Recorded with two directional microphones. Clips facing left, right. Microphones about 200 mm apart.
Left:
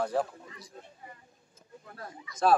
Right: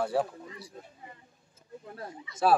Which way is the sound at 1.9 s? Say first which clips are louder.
Right 1 dB; 25° right (ahead or behind).